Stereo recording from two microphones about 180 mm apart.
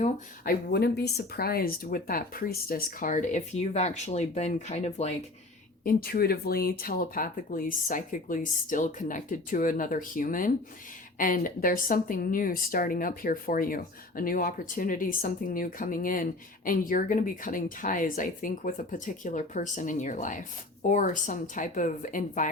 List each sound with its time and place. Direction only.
0.4 s speech: 65° left (ahead or behind); by 5.1 s 40° left (ahead or behind)
5.8 s speech: 55° left (ahead or behind)